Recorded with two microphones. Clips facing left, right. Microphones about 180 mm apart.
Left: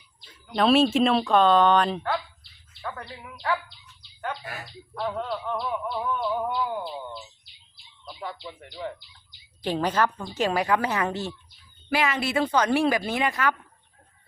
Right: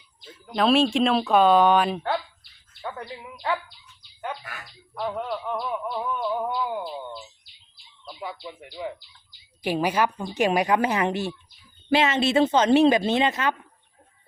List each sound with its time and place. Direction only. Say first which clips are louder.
0.5 s speech: even; centre (ahead or behind)
2.8 s speech: right 2 dB; 20° right (ahead or behind)
4.4 s speech: left 3 dB; 30° left (ahead or behind)
4.9 s a woman's voice: right 1 dB; 10° right (ahead or behind)